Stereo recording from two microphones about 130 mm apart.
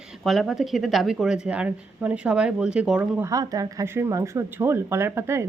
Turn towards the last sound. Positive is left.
turn(degrees=-20)  # may be behind; listen again after turning